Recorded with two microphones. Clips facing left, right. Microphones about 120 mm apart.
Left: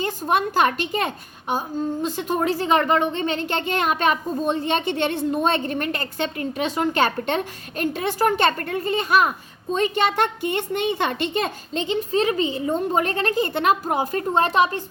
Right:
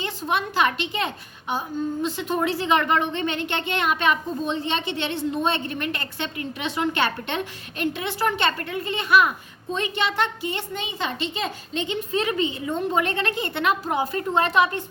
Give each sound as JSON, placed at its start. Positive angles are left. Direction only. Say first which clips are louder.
{"t": 0.0, "sound": "a woman's voice", "louder": "left 4 dB", "side_deg": 45}
{"t": 11.7, "sound": "a woman's voice", "louder": "left 4 dB", "side_deg": 35}